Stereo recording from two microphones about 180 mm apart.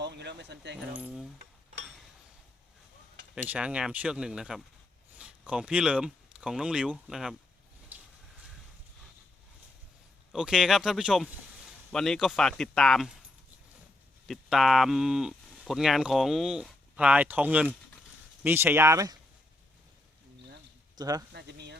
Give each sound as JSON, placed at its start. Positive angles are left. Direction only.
{"t": 0.0, "sound": "speech", "side_deg": -70}
{"t": 0.9, "sound": "speech", "side_deg": -5}
{"t": 3.3, "sound": "speech", "side_deg": -5}
{"t": 7.9, "sound": "a sound", "side_deg": -10}
{"t": 10.3, "sound": "speech", "side_deg": -5}
{"t": 14.3, "sound": "speech", "side_deg": 0}
{"t": 21.0, "sound": "speech", "side_deg": -20}
{"t": 21.3, "sound": "speech", "side_deg": -70}